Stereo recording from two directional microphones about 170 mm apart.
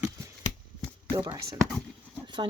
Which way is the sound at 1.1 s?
20° right (ahead or behind).